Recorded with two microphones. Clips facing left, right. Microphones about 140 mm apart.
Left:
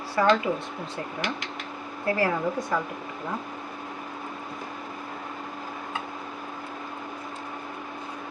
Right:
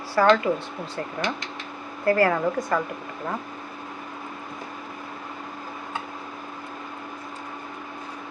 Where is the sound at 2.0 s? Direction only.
70° right (ahead or behind).